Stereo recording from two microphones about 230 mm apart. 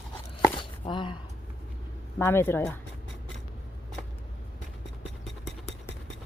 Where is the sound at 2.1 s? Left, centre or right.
Centre.